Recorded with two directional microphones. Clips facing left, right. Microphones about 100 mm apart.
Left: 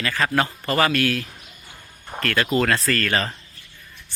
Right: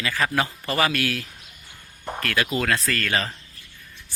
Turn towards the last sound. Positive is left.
turn(degrees=0)  # may be behind; listen again after turning